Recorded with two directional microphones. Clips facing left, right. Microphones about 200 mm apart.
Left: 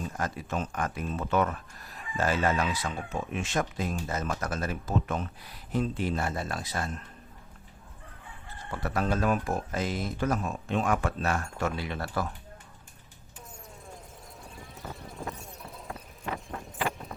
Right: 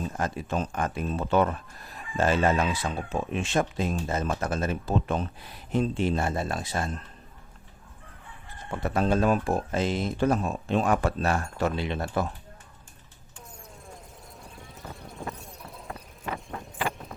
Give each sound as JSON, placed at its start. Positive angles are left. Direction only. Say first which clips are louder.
{"t": 0.2, "sound": "speech", "louder": "right 3 dB", "side_deg": -30}
{"t": 8.7, "sound": "speech", "louder": "right 4 dB", "side_deg": -25}
{"t": 14.5, "sound": "clip-clop", "louder": "left 1 dB", "side_deg": 0}